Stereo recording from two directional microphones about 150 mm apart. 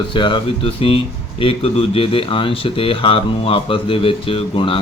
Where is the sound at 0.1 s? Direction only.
35° left (ahead or behind).